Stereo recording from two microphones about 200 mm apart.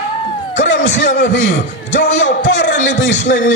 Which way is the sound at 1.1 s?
40° left (ahead or behind).